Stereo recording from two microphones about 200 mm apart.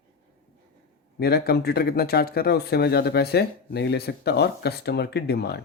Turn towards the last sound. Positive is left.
turn(degrees=55)  # may be behind; listen again after turning